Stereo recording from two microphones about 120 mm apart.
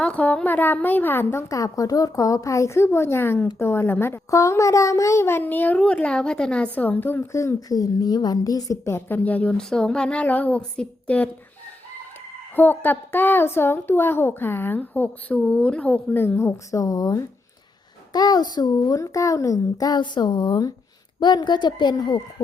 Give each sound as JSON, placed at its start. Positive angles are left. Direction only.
{"t": 0.0, "sound": "a woman's voice", "side_deg": 10}
{"t": 12.5, "sound": "a woman's voice", "side_deg": 15}